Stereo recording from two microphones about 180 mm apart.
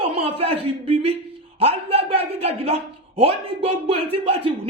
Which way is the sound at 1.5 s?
35° right (ahead or behind).